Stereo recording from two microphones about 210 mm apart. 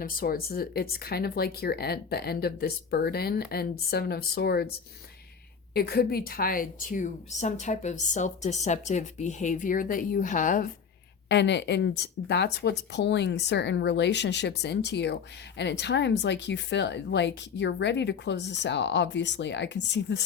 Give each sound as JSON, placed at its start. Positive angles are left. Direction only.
{"t": 0.0, "sound": "speech", "side_deg": 45}
{"t": 5.7, "sound": "a woman's voice", "side_deg": 50}
{"t": 11.3, "sound": "speech", "side_deg": 55}